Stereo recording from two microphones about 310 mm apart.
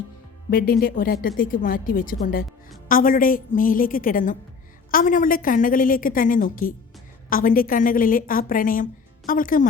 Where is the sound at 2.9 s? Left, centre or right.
Left.